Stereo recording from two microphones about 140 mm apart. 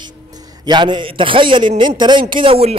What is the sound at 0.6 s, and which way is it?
A man's voice, 35° right (ahead or behind).